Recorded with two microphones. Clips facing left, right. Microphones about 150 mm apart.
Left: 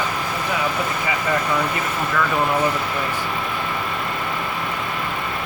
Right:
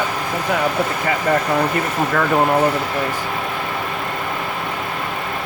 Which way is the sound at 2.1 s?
50° right (ahead or behind).